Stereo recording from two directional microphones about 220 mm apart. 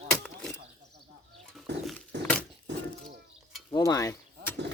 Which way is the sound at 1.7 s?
50° right (ahead or behind).